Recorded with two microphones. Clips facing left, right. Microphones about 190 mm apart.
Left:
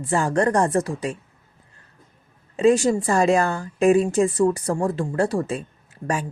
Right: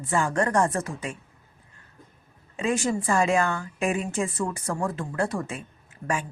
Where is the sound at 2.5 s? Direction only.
35° left (ahead or behind).